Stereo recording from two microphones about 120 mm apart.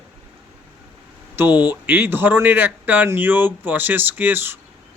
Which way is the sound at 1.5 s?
35° left (ahead or behind).